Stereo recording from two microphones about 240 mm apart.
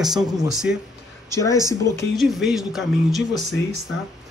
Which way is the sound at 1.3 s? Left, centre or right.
Centre.